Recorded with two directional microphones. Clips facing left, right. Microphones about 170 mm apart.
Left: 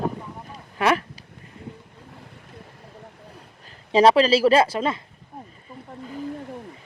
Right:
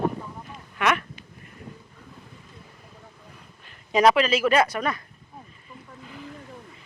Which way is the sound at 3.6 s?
30° left (ahead or behind).